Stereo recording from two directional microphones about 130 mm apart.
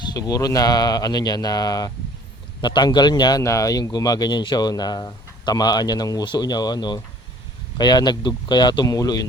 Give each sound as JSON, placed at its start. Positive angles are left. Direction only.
{"t": 0.0, "sound": "a man's voice", "side_deg": 30}